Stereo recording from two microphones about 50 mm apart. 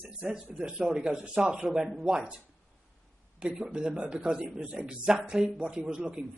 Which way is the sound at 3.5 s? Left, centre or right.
Centre.